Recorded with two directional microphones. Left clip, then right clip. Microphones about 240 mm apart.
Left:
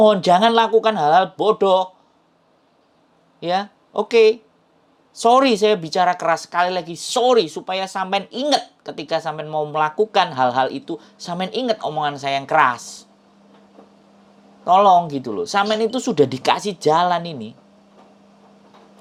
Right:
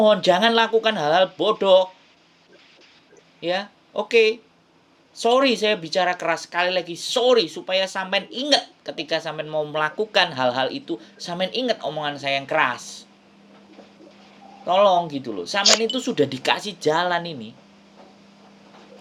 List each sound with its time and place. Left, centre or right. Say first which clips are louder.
0.0 s speech: left 3 dB; centre
3.4 s speech: left 4 dB; left
14.6 s speech: left 4 dB; centre